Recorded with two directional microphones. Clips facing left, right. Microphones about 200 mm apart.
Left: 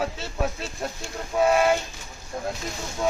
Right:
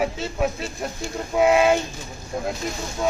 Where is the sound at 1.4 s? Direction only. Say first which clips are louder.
Right 3 dB; 15° right (ahead or behind).